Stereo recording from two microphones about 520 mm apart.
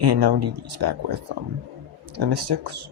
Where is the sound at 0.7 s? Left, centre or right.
Right.